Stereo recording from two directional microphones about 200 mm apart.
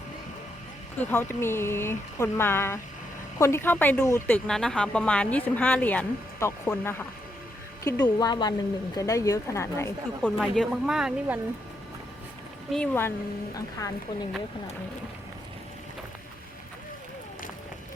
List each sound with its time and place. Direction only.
0.9 s speech: 10° left (ahead or behind)
10.2 s speech: centre (ahead or behind)
12.7 s speech: 5° left (ahead or behind)